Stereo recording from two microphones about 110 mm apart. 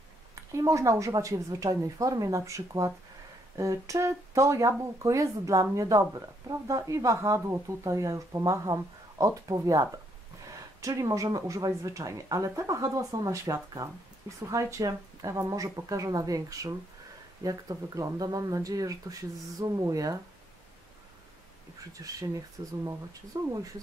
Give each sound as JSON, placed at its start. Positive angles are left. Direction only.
{"t": 0.5, "sound": "speech", "side_deg": -30}
{"t": 22.0, "sound": "speech", "side_deg": -35}